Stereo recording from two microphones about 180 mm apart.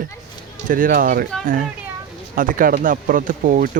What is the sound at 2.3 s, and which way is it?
Speech, 50° right (ahead or behind).